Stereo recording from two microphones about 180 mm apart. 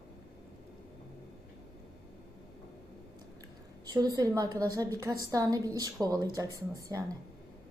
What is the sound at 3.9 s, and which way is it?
A woman's voice, 20° right (ahead or behind).